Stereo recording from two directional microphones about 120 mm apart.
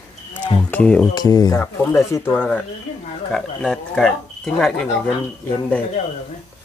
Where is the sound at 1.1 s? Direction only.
35° left (ahead or behind).